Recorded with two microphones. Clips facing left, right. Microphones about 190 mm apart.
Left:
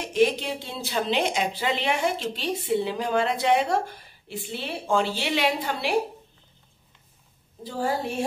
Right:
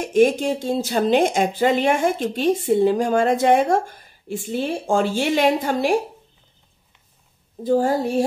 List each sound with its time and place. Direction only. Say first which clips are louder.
0.0 s speech: right 6 dB; 50° right (ahead or behind)
7.6 s speech: right 9 dB; 45° right (ahead or behind)